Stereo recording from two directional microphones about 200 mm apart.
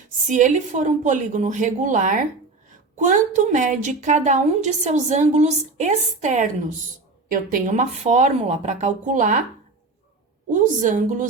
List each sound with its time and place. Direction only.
0.3 s a woman's voice: 40° right (ahead or behind)
10.5 s a woman's voice: 40° right (ahead or behind)